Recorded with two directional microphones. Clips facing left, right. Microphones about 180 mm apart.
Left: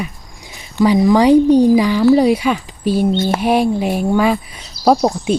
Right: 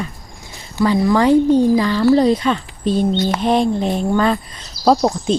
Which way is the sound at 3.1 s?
25° left (ahead or behind).